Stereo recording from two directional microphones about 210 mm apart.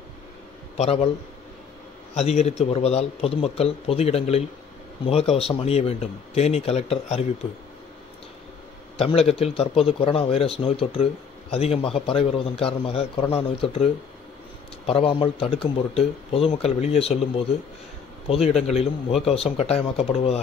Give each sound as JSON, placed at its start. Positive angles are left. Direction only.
{"t": 0.7, "sound": "a man's voice", "side_deg": 30}
{"t": 2.1, "sound": "a man's voice", "side_deg": 30}
{"t": 8.9, "sound": "a man's voice", "side_deg": 25}
{"t": 14.9, "sound": "a man's voice", "side_deg": 25}
{"t": 18.6, "sound": "a man's voice", "side_deg": 30}